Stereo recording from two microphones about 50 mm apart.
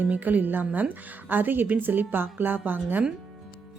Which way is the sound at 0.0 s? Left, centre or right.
Right.